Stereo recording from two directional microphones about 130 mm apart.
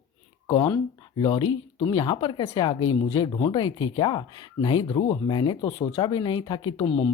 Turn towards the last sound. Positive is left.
turn(degrees=40)  # may be behind; listen again after turning